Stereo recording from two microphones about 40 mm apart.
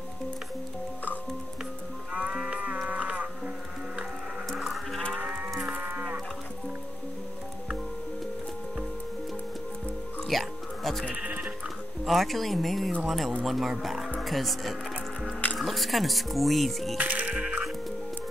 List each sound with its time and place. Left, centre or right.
2.1 s sheep: right
2.6 s moo: right
4.5 s sheep: centre
5.1 s livestock: right
5.8 s moo: right
10.2 s music: centre
12.1 s speech: centre
17.0 s music: right
17.3 s music: right